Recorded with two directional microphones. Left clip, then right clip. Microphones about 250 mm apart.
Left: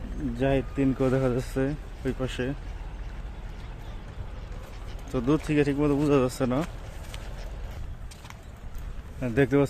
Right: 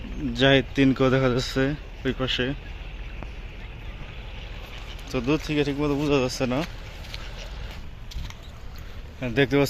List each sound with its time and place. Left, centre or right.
0.3 s speech: centre
5.1 s speech: centre
9.2 s speech: centre